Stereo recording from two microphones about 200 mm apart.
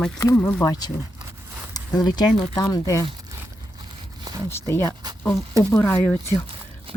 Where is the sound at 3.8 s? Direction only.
20° right (ahead or behind).